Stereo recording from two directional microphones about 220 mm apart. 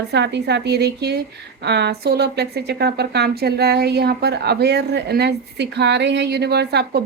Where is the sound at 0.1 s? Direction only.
50° right (ahead or behind).